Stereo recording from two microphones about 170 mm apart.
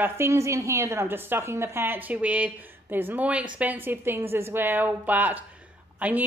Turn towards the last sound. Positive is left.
turn(degrees=-10)  # may be behind; listen again after turning